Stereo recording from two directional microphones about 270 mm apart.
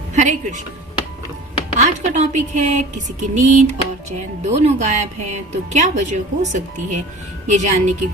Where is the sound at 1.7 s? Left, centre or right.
Right.